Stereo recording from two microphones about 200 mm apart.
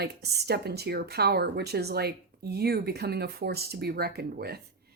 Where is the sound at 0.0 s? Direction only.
55° right (ahead or behind).